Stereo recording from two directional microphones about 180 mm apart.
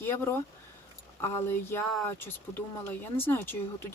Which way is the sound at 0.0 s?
10° left (ahead or behind).